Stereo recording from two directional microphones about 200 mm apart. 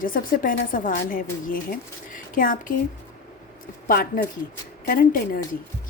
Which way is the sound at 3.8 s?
45° left (ahead or behind).